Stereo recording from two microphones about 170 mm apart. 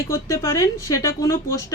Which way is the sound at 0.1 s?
15° left (ahead or behind).